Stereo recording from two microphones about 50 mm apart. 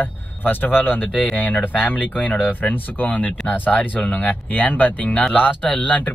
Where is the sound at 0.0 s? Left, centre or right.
Left.